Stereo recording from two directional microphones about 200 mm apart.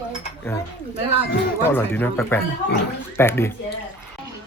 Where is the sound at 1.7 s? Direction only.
10° left (ahead or behind).